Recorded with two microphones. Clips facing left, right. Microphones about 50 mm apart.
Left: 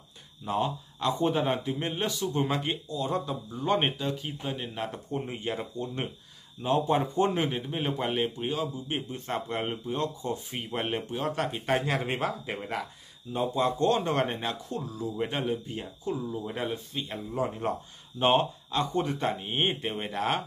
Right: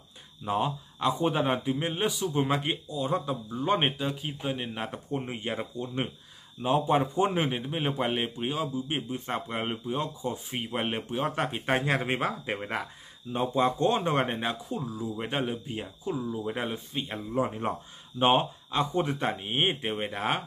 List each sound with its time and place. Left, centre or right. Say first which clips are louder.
0.5 s a man's voice: right 1 dB; centre
13.6 s a man's voice: right 1 dB; right